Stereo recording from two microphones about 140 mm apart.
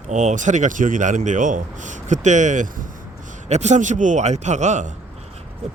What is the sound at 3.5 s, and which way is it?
Speech, 55° right (ahead or behind).